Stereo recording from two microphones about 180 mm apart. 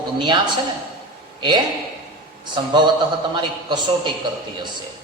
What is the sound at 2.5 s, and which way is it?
A man's voice, 25° right (ahead or behind).